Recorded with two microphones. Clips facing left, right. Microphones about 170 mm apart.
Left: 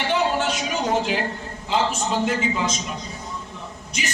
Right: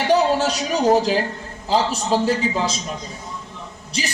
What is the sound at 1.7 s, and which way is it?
A man's voice, 35° right (ahead or behind).